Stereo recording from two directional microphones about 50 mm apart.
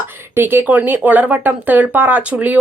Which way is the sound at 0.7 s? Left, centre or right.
Right.